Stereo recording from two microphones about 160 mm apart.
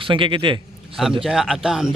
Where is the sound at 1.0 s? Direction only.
Centre (ahead or behind).